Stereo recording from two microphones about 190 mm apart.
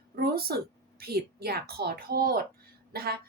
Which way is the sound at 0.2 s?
55° right (ahead or behind).